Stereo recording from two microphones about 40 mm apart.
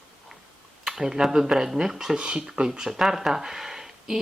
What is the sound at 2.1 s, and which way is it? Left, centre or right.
Speech, right.